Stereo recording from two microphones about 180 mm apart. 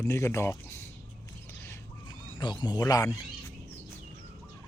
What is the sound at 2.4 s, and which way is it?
Speech, 25° left (ahead or behind).